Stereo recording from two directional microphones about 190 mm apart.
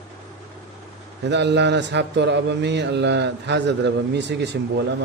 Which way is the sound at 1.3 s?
65° right (ahead or behind).